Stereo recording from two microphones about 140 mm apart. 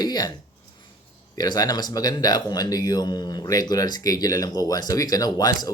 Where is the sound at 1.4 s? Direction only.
30° left (ahead or behind).